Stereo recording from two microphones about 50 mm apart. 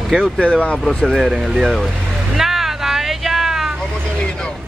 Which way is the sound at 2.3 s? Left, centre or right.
Centre.